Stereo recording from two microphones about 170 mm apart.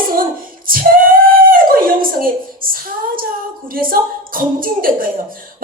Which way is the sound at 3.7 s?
55° right (ahead or behind).